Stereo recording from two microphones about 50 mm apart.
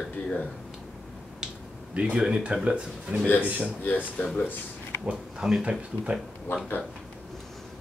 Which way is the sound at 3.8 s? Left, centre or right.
Left.